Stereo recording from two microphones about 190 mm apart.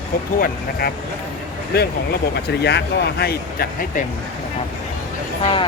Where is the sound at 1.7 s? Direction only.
55° left (ahead or behind).